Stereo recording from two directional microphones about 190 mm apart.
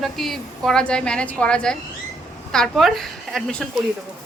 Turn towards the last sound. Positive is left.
turn(degrees=5)  # may be behind; listen again after turning